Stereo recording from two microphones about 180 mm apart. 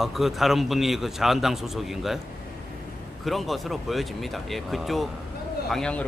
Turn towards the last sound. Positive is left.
turn(degrees=5)  # may be behind; listen again after turning